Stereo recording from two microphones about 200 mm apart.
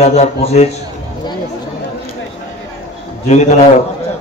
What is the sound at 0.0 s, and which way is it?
Speech, 35° left (ahead or behind).